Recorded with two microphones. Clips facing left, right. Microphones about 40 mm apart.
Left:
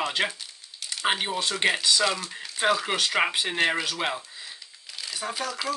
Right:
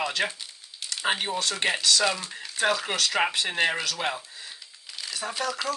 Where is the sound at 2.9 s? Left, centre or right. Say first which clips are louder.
Left 1 dB; left.